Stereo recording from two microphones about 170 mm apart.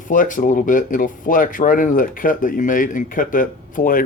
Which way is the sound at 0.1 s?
50° left (ahead or behind).